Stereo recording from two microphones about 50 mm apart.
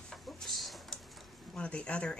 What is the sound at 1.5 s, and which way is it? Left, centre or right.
Speech, left.